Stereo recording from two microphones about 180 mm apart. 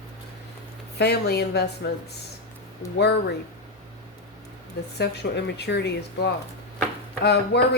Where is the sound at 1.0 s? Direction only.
65° left (ahead or behind).